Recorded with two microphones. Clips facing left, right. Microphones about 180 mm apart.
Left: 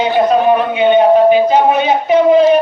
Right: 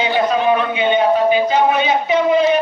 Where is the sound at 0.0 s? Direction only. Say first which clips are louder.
Left 5 dB; 50° left (ahead or behind).